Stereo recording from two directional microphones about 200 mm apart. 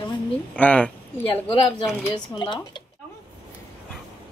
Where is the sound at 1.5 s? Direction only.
25° left (ahead or behind).